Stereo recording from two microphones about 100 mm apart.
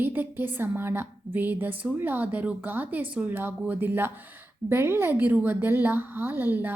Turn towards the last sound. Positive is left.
turn(degrees=-20)  # may be behind; listen again after turning